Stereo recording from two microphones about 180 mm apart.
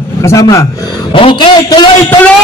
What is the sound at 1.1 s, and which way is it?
Speech, 30° left (ahead or behind).